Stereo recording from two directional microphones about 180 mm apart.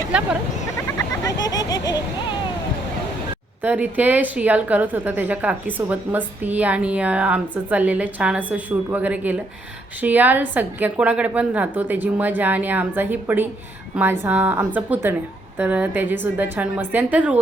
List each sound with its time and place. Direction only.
0.9 s speech: 20° left (ahead or behind)
3.6 s a woman's voice: 10° right (ahead or behind)